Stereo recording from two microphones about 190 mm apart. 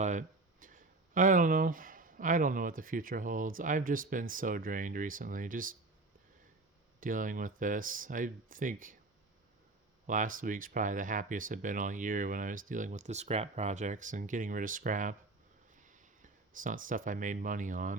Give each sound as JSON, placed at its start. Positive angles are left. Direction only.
{"t": 0.0, "sound": "speech", "side_deg": -40}
{"t": 7.0, "sound": "speech", "side_deg": -45}
{"t": 10.1, "sound": "speech", "side_deg": -45}